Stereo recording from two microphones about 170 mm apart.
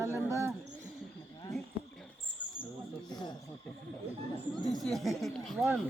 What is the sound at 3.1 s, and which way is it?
Snake, 25° left (ahead or behind).